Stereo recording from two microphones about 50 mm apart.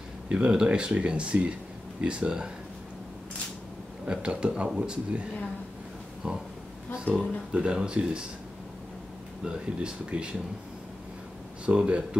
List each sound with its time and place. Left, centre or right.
0.3 s speech: centre
4.0 s speech: centre
6.2 s speech: right
7.5 s speech: centre
9.4 s speech: centre
11.6 s speech: right